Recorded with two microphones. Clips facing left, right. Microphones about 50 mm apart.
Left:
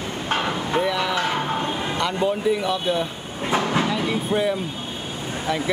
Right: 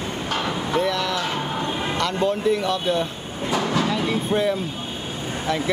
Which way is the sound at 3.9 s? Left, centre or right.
Centre.